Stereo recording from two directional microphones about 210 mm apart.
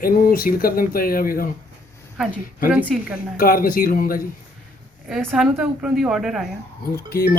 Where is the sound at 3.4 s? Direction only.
45° left (ahead or behind).